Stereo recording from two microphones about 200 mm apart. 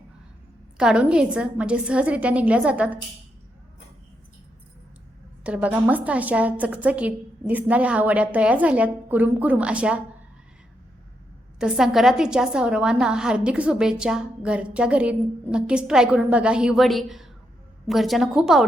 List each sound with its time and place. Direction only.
0.8 s a woman's voice: 5° right (ahead or behind)
5.4 s a woman's voice: 5° right (ahead or behind)
11.6 s a woman's voice: centre (ahead or behind)